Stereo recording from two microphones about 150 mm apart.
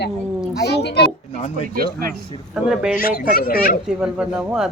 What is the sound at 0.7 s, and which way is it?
Speech, 90° left.